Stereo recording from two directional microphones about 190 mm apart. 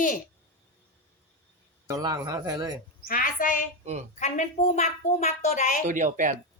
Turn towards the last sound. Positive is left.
turn(degrees=-45)  # may be behind; listen again after turning